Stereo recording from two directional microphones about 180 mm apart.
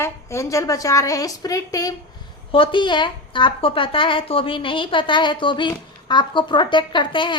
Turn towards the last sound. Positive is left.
turn(degrees=25)  # may be behind; listen again after turning